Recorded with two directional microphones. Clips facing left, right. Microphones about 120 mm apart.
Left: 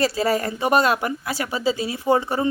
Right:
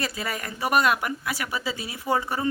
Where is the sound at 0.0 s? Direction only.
30° left (ahead or behind).